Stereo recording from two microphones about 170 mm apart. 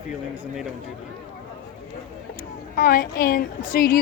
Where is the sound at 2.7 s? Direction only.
55° left (ahead or behind).